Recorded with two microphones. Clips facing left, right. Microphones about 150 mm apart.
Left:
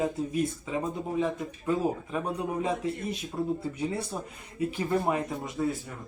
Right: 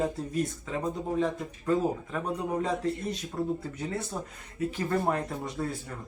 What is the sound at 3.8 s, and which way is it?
Speech, 10° left (ahead or behind).